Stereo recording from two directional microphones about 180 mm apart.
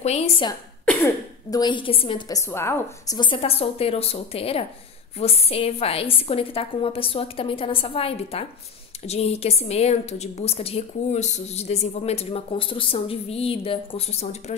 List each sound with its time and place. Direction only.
0.0 s a woman's voice: 35° left (ahead or behind)
0.8 s a woman's voice: 20° left (ahead or behind)
3.2 s a woman's voice: 30° left (ahead or behind)